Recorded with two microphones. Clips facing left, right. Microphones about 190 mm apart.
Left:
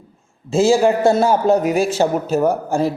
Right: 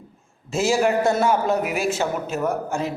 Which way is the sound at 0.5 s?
30° left (ahead or behind).